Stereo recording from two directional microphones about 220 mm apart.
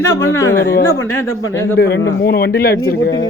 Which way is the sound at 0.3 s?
10° left (ahead or behind).